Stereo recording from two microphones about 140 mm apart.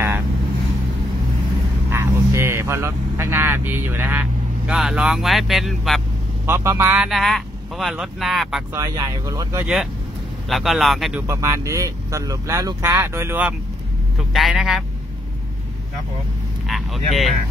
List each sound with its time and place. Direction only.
1.9 s speech: 20° right (ahead or behind); by 6.0 s centre (ahead or behind)
6.4 s speech: 20° right (ahead or behind)
7.0 s speech: centre (ahead or behind)
8.7 s speech: 25° right (ahead or behind)
10.5 s speech: centre (ahead or behind)
11.2 s speech: 20° right (ahead or behind)
14.1 s speech: centre (ahead or behind)
16.6 s speech: centre (ahead or behind)